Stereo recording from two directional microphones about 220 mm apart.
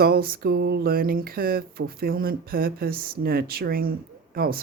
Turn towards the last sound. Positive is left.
turn(degrees=-45)  # may be behind; listen again after turning